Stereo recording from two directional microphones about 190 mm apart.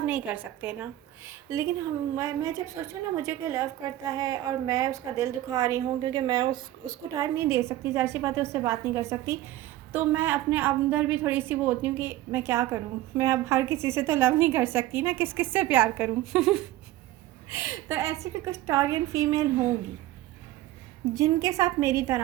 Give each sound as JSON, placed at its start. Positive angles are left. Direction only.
{"t": 0.0, "sound": "a woman's voice", "side_deg": -10}
{"t": 7.1, "sound": "a woman's voice", "side_deg": -15}
{"t": 17.5, "sound": "a woman's voice", "side_deg": -15}
{"t": 21.0, "sound": "a woman's voice", "side_deg": -15}